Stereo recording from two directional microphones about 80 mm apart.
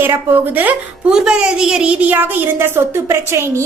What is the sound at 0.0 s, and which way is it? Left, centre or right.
Speech, right.